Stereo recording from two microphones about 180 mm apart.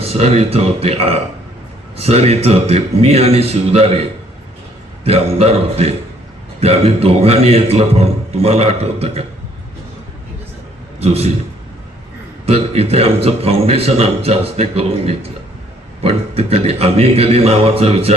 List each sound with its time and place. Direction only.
0.0 s a man's voice: 35° right (ahead or behind)
5.0 s a man's voice: 35° right (ahead or behind)
11.0 s a man's voice: 35° right (ahead or behind)
12.5 s a man's voice: 35° right (ahead or behind)